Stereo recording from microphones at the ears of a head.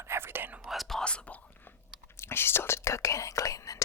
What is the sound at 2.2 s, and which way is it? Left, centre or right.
Speech, left.